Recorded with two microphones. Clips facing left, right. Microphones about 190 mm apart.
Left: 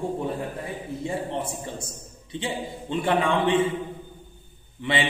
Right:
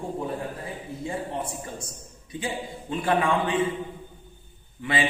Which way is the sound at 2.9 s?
25° left (ahead or behind).